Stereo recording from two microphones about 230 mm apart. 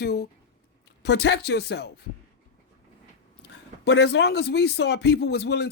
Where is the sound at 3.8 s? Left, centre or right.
Left.